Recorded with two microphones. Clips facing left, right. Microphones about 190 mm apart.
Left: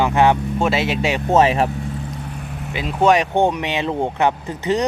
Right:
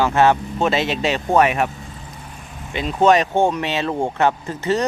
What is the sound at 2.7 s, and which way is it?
Speech, 5° left (ahead or behind).